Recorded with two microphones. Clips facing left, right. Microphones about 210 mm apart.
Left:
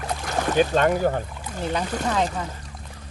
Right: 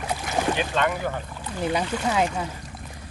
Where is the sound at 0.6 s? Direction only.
40° left (ahead or behind).